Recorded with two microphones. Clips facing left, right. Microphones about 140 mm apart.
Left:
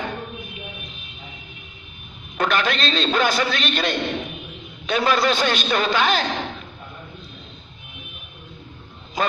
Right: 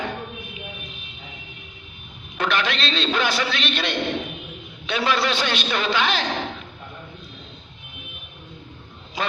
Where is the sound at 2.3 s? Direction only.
45° left (ahead or behind).